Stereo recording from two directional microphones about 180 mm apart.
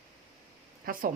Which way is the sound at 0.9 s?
50° right (ahead or behind).